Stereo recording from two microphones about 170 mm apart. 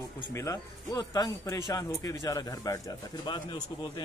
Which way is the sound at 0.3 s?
15° left (ahead or behind).